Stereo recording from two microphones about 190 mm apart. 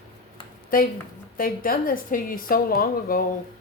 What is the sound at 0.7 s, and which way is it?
Speech, 45° left (ahead or behind).